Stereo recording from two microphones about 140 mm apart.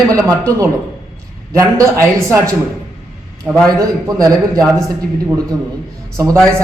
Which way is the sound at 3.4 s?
5° right (ahead or behind).